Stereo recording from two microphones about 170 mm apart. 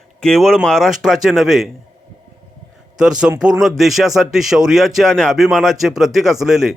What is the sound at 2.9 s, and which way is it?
Speech, 5° right (ahead or behind).